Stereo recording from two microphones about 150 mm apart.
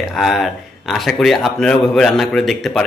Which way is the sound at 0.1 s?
Centre (ahead or behind).